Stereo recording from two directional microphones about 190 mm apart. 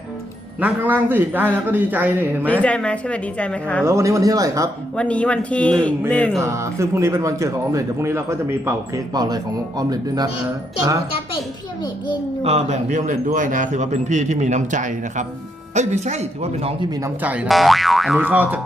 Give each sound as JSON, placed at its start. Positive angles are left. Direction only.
{"t": 0.6, "sound": "speech", "side_deg": -10}
{"t": 2.5, "sound": "a woman's voice", "side_deg": 5}
{"t": 3.8, "sound": "speech", "side_deg": -15}
{"t": 4.9, "sound": "a woman's voice", "side_deg": 5}
{"t": 6.4, "sound": "speech", "side_deg": -15}
{"t": 12.4, "sound": "speech", "side_deg": -35}
{"t": 17.2, "sound": "speech", "side_deg": -5}